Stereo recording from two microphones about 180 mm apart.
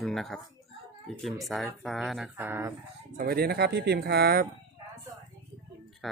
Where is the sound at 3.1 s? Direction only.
60° right (ahead or behind).